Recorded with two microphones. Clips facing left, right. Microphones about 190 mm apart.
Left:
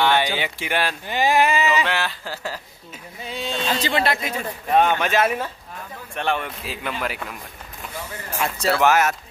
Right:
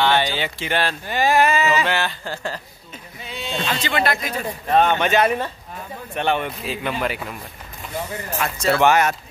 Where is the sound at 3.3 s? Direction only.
35° left (ahead or behind).